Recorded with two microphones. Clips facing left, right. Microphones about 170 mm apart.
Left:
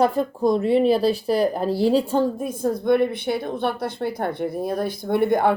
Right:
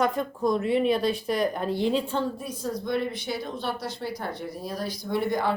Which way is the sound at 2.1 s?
45° left (ahead or behind).